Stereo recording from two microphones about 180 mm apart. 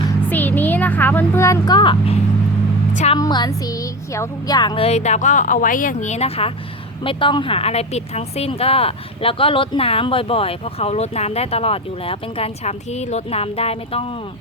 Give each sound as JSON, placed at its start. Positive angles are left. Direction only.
{"t": 0.3, "sound": "speech", "side_deg": 10}
{"t": 2.9, "sound": "a woman's voice", "side_deg": 40}
{"t": 3.2, "sound": "speech", "side_deg": 25}